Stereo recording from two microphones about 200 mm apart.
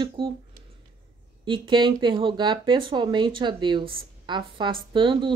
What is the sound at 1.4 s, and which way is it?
Speech, 25° right (ahead or behind).